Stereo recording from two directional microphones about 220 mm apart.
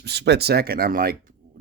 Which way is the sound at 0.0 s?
50° right (ahead or behind).